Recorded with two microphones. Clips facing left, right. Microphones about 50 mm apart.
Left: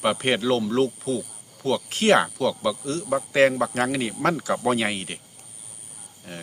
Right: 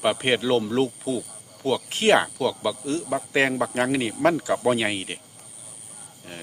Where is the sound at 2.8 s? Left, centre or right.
Centre.